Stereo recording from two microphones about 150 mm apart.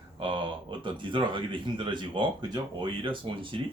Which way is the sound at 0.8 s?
35° right (ahead or behind).